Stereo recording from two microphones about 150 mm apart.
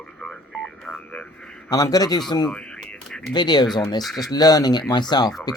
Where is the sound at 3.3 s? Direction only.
30° left (ahead or behind).